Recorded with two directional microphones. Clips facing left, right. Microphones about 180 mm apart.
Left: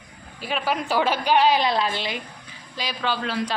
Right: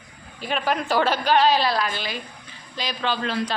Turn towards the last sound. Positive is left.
turn(degrees=10)  # may be behind; listen again after turning